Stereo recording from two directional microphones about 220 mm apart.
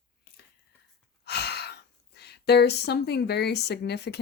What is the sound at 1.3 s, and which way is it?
Gasp, 50° left (ahead or behind).